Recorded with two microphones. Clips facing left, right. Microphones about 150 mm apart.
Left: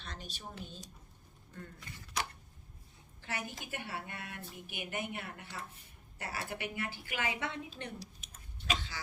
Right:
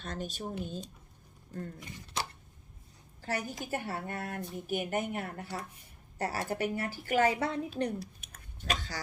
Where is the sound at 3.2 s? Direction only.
40° right (ahead or behind).